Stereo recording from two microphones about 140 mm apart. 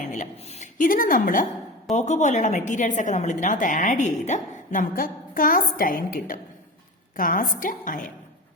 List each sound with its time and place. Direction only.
0.0 s a sound: 60° left (ahead or behind)
0.8 s a woman's voice: 80° left
2.0 s a woman's voice: 60° left (ahead or behind)